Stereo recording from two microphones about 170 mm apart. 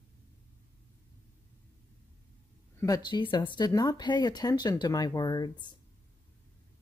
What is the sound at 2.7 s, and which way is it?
Speech, 20° left (ahead or behind).